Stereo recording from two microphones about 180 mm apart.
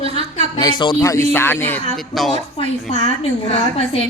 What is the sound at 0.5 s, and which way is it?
A woman's voice, 25° left (ahead or behind).